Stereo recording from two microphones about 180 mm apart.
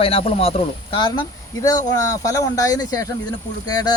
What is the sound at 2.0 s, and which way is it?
Speech, 20° left (ahead or behind).